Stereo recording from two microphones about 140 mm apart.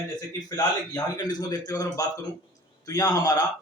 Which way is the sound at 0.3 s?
25° left (ahead or behind).